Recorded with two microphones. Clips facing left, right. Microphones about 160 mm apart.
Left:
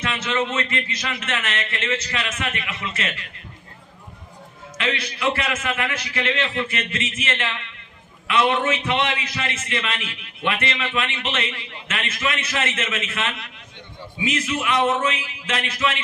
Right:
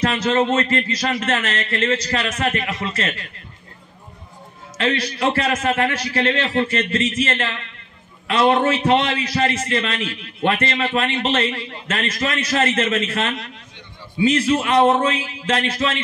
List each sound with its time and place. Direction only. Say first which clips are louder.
0.0 s a man's voice: right 6 dB; 35° right (ahead or behind)
4.7 s a man's voice: right 5 dB; 35° right (ahead or behind)